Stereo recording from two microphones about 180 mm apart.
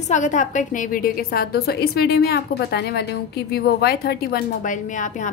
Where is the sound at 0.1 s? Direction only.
45° left (ahead or behind).